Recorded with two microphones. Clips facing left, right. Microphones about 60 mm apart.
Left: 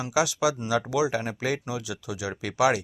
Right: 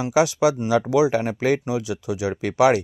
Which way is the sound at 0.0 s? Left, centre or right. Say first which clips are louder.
Right 6 dB; right.